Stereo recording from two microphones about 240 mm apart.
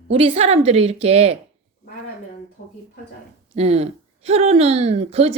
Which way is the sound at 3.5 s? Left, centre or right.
Right.